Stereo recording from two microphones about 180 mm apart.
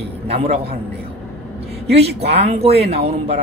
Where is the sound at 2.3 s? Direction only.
35° right (ahead or behind).